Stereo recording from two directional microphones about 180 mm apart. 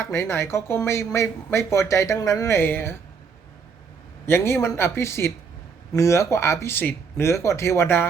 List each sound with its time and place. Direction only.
0.0 s speech: 15° left (ahead or behind)
4.3 s speech: 15° left (ahead or behind)